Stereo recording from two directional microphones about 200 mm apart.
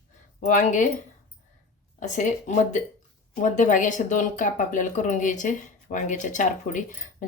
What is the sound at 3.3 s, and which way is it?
Speech, 40° left (ahead or behind).